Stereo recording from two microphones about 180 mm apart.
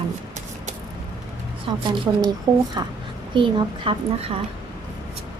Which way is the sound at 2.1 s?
15° right (ahead or behind).